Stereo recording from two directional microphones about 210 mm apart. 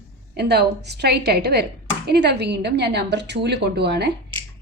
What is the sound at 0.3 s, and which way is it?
A woman's voice, 50° right (ahead or behind).